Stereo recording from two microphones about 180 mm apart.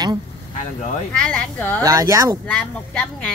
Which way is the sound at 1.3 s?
10° left (ahead or behind).